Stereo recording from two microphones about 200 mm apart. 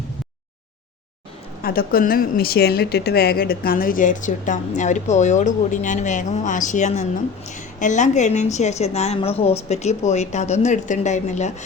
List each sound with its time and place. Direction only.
1.6 s a woman's voice: 45° left (ahead or behind)